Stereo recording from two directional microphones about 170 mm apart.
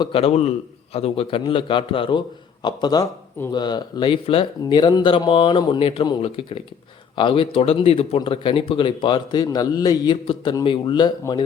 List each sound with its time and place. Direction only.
0.0 s a man's voice: 35° left (ahead or behind)